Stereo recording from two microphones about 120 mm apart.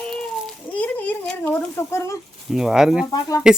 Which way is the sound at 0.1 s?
10° left (ahead or behind).